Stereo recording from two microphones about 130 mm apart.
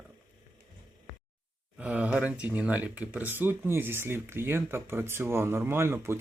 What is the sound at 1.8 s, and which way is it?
Speech, 10° right (ahead or behind).